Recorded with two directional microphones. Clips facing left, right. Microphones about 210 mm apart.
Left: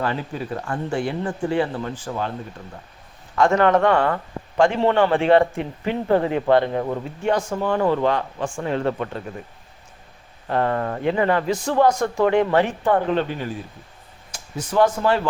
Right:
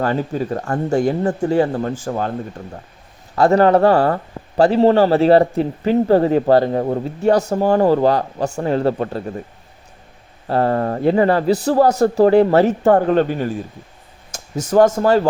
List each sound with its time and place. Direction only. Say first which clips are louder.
0.0 s speech: right 6 dB; 40° right (ahead or behind)
3.3 s a man's voice: right 4 dB; 35° right (ahead or behind)
10.4 s a man's voice: right 4 dB; 35° right (ahead or behind)